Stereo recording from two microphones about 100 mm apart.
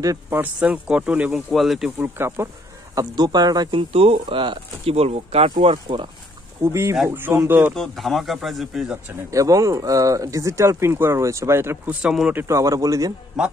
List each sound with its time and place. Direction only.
0.3 s speech: 15° right (ahead or behind)
1.5 s speech: centre (ahead or behind)
2.0 s speech: 25° right (ahead or behind)
3.0 s speech: 45° right (ahead or behind)
3.7 s speech: 70° right (ahead or behind)
4.9 s speech: 90° right; by 6.0 s 60° right (ahead or behind)
6.6 s speech: 30° right (ahead or behind)
7.7 s speech: centre (ahead or behind)
9.3 s speech: 35° right (ahead or behind); by 12.1 s 15° right (ahead or behind)
12.1 s speech: 5° right (ahead or behind)
12.4 s a man's voice: 30° right (ahead or behind)
13.4 s speech: 5° right (ahead or behind)